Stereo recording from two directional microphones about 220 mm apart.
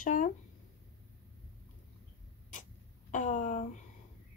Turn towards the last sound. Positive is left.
turn(degrees=35)  # may be behind; listen again after turning